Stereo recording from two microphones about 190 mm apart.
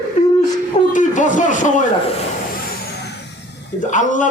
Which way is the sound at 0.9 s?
40° left (ahead or behind).